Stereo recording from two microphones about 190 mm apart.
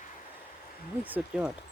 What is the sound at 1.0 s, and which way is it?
Speech, 5° right (ahead or behind).